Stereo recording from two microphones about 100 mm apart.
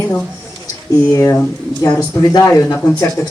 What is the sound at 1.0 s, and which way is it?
Speech, 25° left (ahead or behind).